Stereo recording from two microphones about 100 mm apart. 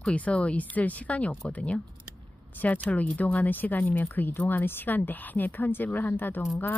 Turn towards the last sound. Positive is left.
turn(degrees=20)  # may be behind; listen again after turning